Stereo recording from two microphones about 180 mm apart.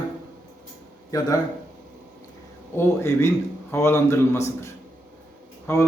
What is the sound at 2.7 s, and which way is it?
Speech, 15° left (ahead or behind).